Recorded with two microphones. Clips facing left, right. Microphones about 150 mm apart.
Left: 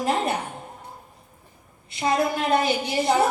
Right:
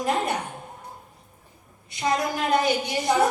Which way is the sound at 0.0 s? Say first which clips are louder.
Left 1 dB; 25° left (ahead or behind).